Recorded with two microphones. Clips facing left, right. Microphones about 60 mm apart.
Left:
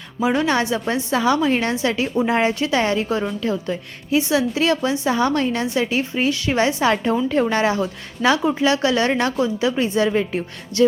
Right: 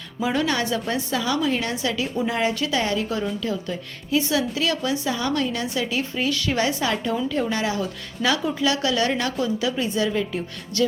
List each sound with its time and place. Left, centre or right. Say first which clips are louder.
0.2 s a woman's voice: left 4 dB; left